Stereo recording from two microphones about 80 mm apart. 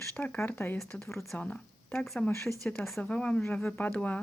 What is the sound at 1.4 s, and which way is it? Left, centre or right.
Speech, centre.